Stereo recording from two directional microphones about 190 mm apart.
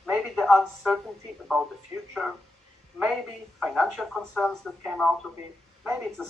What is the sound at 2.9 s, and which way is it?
Speech, centre (ahead or behind).